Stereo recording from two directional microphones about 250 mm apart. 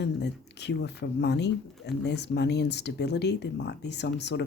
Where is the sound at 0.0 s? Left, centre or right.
Left.